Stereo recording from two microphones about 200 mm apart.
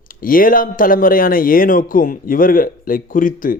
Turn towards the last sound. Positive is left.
turn(degrees=45)  # may be behind; listen again after turning